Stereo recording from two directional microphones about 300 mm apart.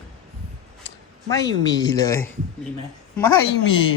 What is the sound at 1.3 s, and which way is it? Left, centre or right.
Speech, centre.